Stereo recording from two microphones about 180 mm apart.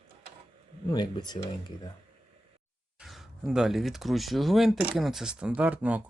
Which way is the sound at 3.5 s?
5° right (ahead or behind).